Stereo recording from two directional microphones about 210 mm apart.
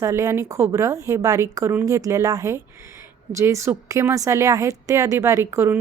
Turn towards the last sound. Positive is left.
turn(degrees=-10)  # may be behind; listen again after turning